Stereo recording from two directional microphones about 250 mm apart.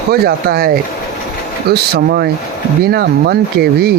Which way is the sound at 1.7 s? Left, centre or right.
Right.